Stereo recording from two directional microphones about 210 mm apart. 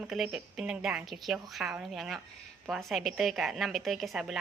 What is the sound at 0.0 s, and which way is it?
A woman's voice, 5° right (ahead or behind).